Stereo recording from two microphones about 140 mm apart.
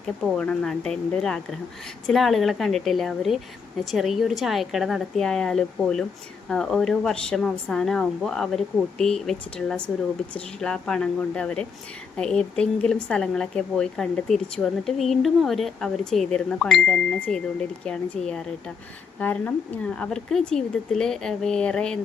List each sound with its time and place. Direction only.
0.3 s a woman's voice: 5° left (ahead or behind)